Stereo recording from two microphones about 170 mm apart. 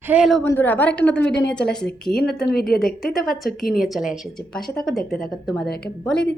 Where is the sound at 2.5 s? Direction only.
65° left (ahead or behind).